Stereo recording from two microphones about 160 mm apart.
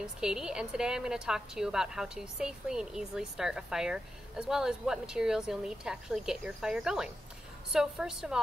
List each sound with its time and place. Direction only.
0.0 s a woman's voice: 5° right (ahead or behind)